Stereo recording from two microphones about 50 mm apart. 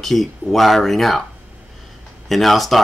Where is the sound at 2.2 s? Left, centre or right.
Centre.